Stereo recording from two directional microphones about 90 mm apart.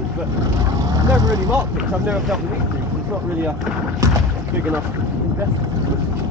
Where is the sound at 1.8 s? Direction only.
5° right (ahead or behind).